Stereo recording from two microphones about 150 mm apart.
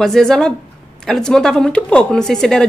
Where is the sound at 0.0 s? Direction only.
5° left (ahead or behind).